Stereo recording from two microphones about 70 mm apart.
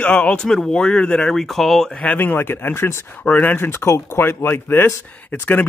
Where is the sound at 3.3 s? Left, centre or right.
Left.